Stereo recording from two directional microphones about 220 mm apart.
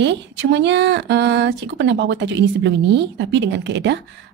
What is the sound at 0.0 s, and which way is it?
A woman's voice, 55° right (ahead or behind).